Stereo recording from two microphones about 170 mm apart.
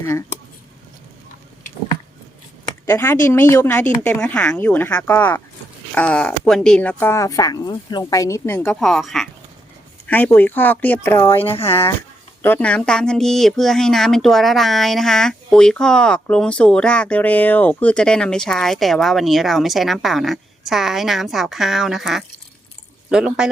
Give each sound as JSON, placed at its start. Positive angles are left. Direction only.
{"t": 0.0, "sound": "speech", "side_deg": 20}
{"t": 2.8, "sound": "speech", "side_deg": 15}
{"t": 11.5, "sound": "speech", "side_deg": 35}
{"t": 12.4, "sound": "speech", "side_deg": 10}